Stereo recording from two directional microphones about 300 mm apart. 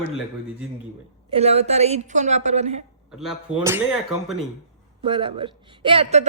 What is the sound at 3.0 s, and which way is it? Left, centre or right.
Speech, centre.